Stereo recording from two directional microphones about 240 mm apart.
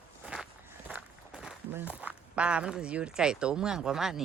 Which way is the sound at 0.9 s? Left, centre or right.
Centre.